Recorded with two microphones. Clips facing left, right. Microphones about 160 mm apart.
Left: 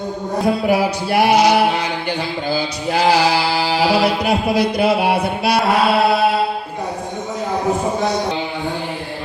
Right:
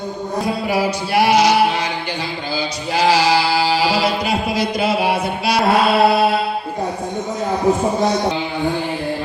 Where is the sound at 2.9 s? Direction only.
60° left (ahead or behind).